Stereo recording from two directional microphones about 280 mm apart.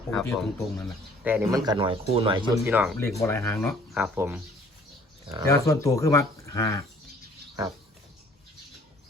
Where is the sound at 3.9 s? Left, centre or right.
Centre.